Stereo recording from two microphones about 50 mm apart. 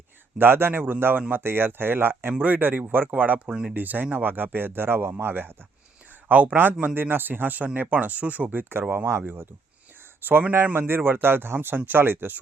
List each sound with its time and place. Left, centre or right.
0.3 s speech: right
3.5 s speech: centre
3.8 s speech: right
6.2 s speech: right